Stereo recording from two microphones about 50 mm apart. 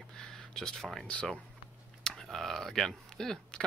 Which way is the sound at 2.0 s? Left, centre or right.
Centre.